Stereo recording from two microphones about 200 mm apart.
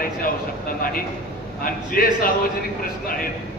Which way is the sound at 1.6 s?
45° left (ahead or behind).